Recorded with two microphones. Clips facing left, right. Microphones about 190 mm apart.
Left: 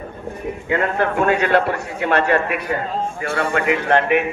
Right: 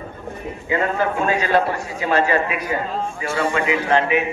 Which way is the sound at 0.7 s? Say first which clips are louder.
Left 1 dB; 60° left (ahead or behind).